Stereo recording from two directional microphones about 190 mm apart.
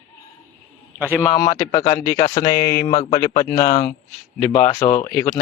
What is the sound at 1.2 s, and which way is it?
Speech, 15° left (ahead or behind).